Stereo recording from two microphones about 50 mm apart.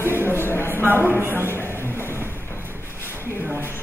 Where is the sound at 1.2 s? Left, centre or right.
Right.